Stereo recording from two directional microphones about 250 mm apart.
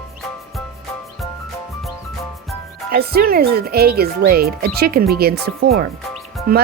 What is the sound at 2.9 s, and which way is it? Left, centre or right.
Speech, right.